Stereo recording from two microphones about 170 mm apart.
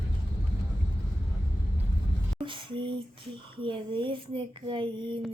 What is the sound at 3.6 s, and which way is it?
Speech, 30° right (ahead or behind).